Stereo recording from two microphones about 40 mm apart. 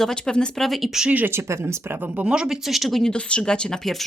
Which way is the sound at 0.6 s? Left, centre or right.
Centre.